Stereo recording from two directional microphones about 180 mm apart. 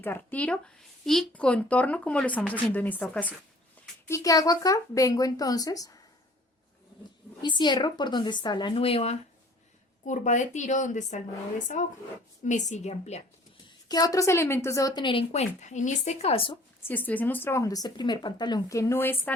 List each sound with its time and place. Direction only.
0.0 s speech: 10° left (ahead or behind)
4.1 s speech: 20° left (ahead or behind)
7.4 s a woman's voice: 25° left (ahead or behind)
13.8 s speech: 20° left (ahead or behind)
16.8 s speech: 10° left (ahead or behind)